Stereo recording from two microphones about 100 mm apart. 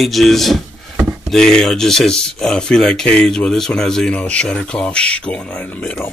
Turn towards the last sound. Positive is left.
turn(degrees=15)  # may be behind; listen again after turning